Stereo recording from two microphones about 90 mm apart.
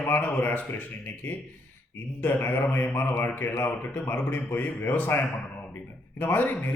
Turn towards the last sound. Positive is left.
turn(degrees=20)  # may be behind; listen again after turning